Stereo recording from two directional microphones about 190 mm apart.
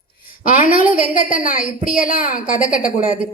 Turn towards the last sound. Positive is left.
turn(degrees=45)  # may be behind; listen again after turning